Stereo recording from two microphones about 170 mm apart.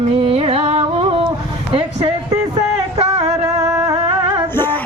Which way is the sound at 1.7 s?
30° right (ahead or behind).